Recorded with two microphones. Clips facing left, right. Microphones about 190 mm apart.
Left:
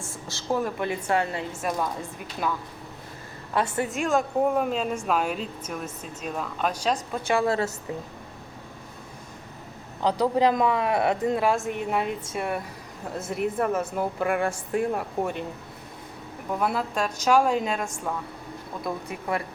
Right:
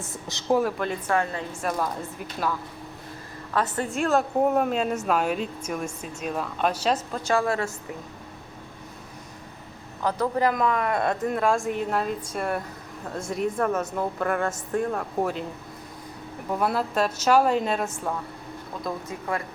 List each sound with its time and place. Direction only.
0.0 s speech: 20° right (ahead or behind)
1.1 s a woman's voice: 20° left (ahead or behind)
1.6 s speech: centre (ahead or behind)
3.5 s speech: 10° left (ahead or behind)
3.8 s speech: centre (ahead or behind)
4.9 s speech: 5° left (ahead or behind)
7.3 s a woman's voice: 20° left (ahead or behind)
10.0 s speech: 15° left (ahead or behind)
16.6 s speech: 5° right (ahead or behind)